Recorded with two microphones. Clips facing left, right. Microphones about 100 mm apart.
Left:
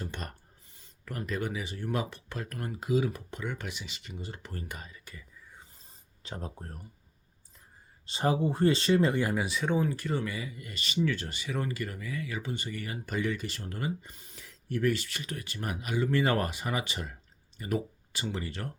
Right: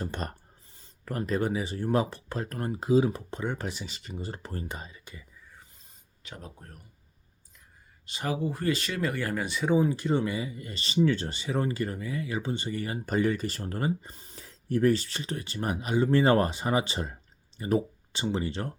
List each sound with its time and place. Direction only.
0.0 s writing: 40° right (ahead or behind)
0.8 s speech: 35° right (ahead or behind)
6.2 s speech: 35° left (ahead or behind)
8.0 s speech: 30° left (ahead or behind)
9.3 s speech: 5° left (ahead or behind); by 18.7 s 25° right (ahead or behind)